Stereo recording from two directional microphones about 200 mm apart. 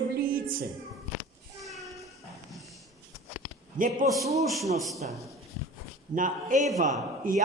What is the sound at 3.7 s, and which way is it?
Speech, 45° right (ahead or behind).